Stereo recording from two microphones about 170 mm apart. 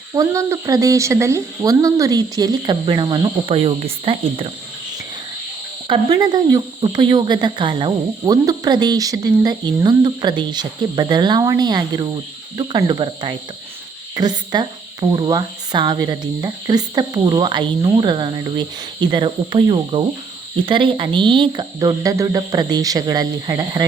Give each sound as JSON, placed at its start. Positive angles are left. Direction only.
{"t": 0.1, "sound": "speech", "side_deg": -20}
{"t": 5.9, "sound": "speech", "side_deg": -25}